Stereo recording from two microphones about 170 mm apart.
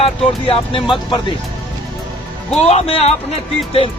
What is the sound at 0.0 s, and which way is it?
Speech, 35° left (ahead or behind).